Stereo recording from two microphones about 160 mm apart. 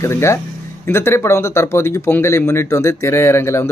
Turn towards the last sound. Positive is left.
turn(degrees=15)  # may be behind; listen again after turning